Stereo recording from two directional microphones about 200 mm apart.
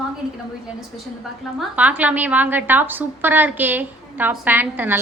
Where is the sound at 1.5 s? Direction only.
5° right (ahead or behind).